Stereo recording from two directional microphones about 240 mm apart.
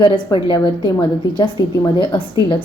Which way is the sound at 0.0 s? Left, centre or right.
Centre.